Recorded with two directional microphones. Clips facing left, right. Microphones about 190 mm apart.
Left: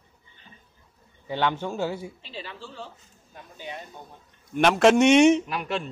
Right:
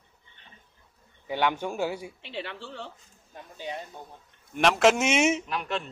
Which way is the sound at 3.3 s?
30° right (ahead or behind).